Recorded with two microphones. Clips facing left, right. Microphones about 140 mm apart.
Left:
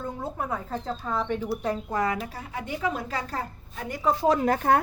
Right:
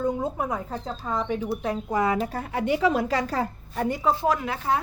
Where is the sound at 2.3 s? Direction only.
60° right (ahead or behind); by 3.8 s 90° right.